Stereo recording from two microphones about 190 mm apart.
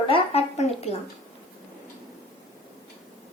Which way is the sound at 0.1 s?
35° left (ahead or behind).